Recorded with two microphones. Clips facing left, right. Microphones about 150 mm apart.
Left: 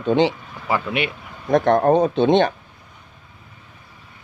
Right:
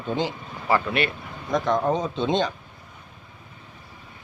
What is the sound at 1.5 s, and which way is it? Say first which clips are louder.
Speech: left 7 dB; 60° left (ahead or behind).